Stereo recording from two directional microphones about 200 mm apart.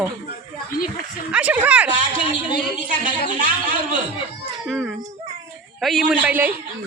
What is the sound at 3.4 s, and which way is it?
Speech, 40° right (ahead or behind).